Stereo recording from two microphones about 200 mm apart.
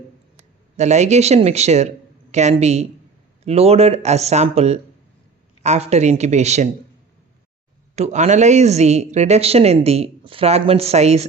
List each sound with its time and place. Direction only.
0.8 s speech: 35° right (ahead or behind)
7.9 s speech: 35° right (ahead or behind)